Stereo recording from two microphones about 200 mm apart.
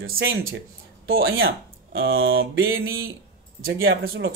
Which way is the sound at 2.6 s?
80° right.